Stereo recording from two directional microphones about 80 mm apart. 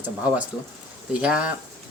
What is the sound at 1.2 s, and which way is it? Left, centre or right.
Speech, centre.